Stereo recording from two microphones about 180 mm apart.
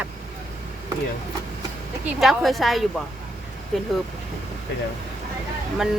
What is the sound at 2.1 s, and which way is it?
Speech, centre (ahead or behind).